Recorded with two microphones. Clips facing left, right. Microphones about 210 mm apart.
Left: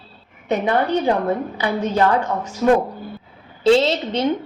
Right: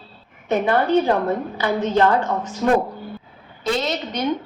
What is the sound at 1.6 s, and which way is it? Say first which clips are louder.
Speech: right 2 dB; 10° left (ahead or behind).